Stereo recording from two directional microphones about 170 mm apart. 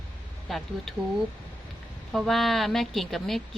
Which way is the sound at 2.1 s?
Centre (ahead or behind).